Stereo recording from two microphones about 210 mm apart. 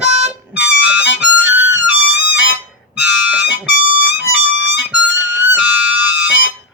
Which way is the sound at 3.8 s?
65° left (ahead or behind).